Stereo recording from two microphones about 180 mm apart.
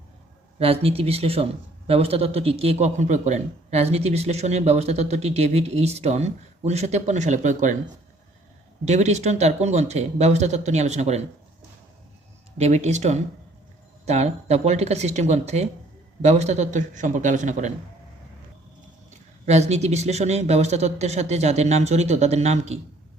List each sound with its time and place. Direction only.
0.6 s a man's voice: 35° right (ahead or behind)
8.8 s a man's voice: 40° right (ahead or behind)
12.5 s a man's voice: 40° right (ahead or behind)
19.5 s a man's voice: 35° right (ahead or behind)